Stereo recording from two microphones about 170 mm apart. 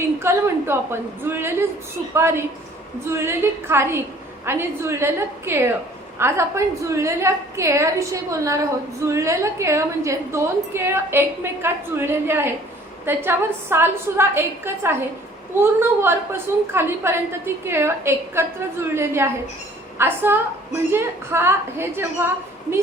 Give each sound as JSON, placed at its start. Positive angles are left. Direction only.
{"t": 0.2, "sound": "a woman's voice", "side_deg": -15}